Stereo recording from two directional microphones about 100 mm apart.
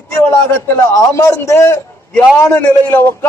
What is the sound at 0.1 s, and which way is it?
A man's voice, 25° left (ahead or behind).